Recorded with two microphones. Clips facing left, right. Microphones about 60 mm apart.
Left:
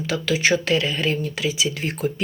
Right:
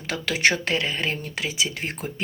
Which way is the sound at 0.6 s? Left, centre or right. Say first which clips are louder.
Left 4 dB; right.